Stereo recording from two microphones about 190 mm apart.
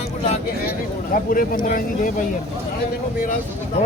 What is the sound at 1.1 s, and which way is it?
Speech, 45° left (ahead or behind).